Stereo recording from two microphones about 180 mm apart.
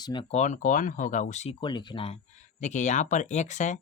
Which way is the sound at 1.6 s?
25° left (ahead or behind).